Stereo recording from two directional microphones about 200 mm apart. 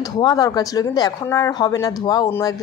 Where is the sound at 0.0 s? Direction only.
20° left (ahead or behind).